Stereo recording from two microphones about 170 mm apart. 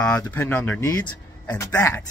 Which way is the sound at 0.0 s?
10° left (ahead or behind).